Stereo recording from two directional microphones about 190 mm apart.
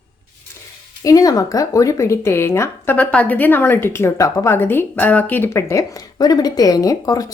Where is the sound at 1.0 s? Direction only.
20° left (ahead or behind).